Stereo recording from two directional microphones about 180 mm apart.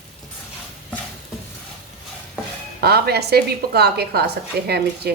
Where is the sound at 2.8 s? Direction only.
60° right (ahead or behind).